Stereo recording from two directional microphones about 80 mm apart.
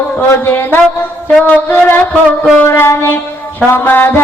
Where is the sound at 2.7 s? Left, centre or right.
Left.